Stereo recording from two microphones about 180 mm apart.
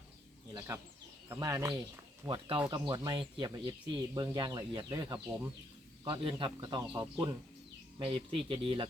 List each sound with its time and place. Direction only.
1.3 s speech: 20° right (ahead or behind)